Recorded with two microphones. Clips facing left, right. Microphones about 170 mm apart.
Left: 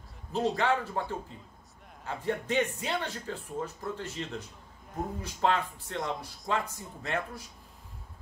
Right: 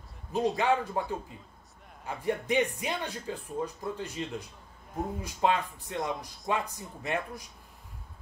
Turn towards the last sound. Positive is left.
turn(degrees=-15)  # may be behind; listen again after turning